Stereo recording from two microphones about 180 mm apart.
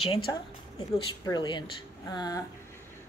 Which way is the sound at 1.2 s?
25° left (ahead or behind).